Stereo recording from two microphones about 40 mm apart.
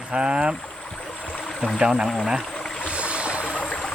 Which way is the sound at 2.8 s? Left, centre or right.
Right.